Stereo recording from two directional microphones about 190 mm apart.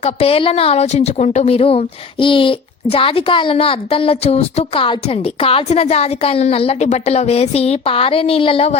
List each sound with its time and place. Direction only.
0.0 s a woman's voice: 30° left (ahead or behind)